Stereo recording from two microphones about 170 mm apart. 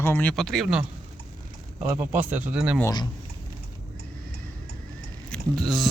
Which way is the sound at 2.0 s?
10° right (ahead or behind).